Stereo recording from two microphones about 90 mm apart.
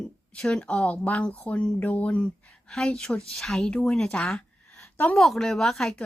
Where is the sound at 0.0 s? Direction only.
10° left (ahead or behind).